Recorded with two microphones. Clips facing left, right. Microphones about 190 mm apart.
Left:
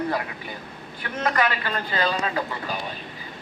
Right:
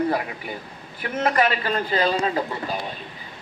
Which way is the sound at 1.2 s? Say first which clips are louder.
Right 3 dB; 25° right (ahead or behind).